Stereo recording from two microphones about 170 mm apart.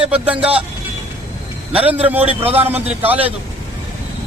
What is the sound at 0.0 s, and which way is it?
Speech, 5° right (ahead or behind).